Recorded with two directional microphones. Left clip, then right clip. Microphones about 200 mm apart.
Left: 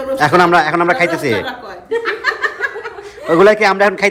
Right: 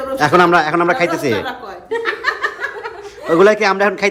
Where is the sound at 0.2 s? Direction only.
15° right (ahead or behind).